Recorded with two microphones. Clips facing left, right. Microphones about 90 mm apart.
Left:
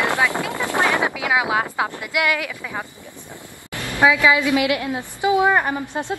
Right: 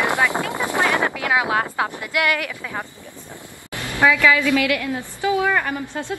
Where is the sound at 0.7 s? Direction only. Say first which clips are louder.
Left 1 dB; 20° left (ahead or behind).